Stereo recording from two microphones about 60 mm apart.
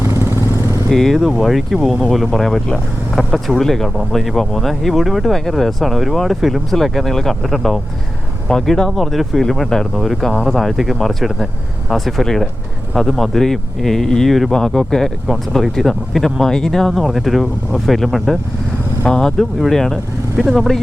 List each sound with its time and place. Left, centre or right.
0.0 s vehicle: right
0.9 s speech: centre
19.0 s speech: centre
19.4 s speech: centre